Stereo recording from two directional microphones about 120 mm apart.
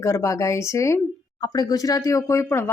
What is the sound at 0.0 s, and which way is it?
Speech, 25° left (ahead or behind).